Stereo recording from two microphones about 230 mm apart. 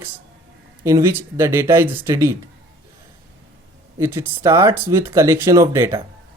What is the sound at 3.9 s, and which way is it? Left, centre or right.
Speech, centre.